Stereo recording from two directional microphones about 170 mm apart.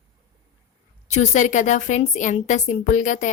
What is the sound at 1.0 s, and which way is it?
A woman's voice, 45° left (ahead or behind).